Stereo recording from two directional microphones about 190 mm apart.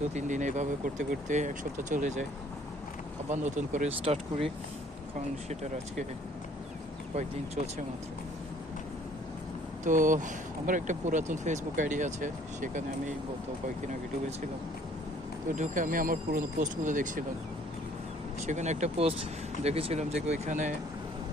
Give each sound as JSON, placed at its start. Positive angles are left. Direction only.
{"t": 0.1, "sound": "speech", "side_deg": -40}
{"t": 3.2, "sound": "speech", "side_deg": -40}
{"t": 9.8, "sound": "speech", "side_deg": -45}
{"t": 15.5, "sound": "speech", "side_deg": -40}
{"t": 18.4, "sound": "speech", "side_deg": -40}